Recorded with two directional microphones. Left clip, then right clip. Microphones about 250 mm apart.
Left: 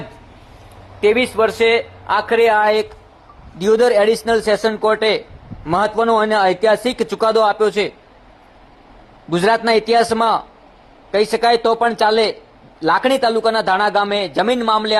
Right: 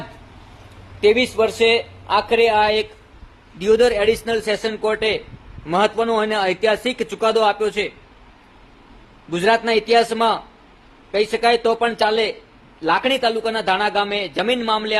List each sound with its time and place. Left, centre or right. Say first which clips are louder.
1.0 s speech: left 1 dB; centre
3.6 s speech: left 3 dB; centre
6.1 s speech: left 5 dB; centre
6.3 s speech: left 4 dB; centre
9.3 s speech: left 3 dB; centre